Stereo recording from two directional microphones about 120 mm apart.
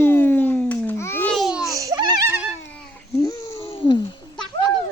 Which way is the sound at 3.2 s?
25° left (ahead or behind).